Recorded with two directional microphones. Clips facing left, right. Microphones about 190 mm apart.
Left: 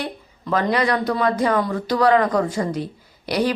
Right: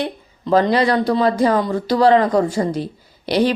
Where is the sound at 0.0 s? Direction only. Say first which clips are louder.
Right 5 dB; 25° right (ahead or behind).